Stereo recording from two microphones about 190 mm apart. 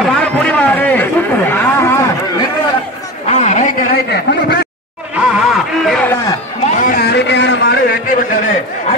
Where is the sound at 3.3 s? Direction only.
40° left (ahead or behind).